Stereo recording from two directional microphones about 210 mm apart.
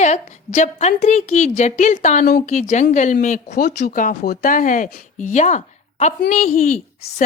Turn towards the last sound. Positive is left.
turn(degrees=40)  # may be behind; listen again after turning